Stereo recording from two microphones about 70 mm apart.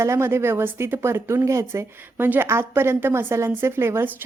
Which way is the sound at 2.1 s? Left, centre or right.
Right.